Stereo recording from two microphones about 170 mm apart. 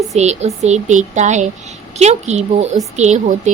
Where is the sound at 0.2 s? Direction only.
40° right (ahead or behind).